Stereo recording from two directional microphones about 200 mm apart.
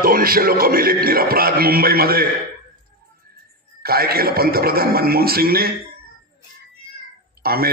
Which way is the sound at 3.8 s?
50° right (ahead or behind).